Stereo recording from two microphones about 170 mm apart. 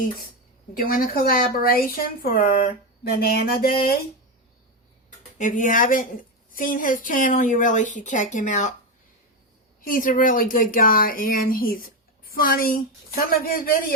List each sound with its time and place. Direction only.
0.7 s speech: 60° left (ahead or behind)
5.4 s speech: 50° left (ahead or behind)
9.8 s speech: 55° left (ahead or behind)